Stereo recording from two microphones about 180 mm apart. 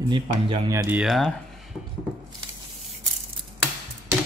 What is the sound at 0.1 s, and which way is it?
Speech, 25° right (ahead or behind).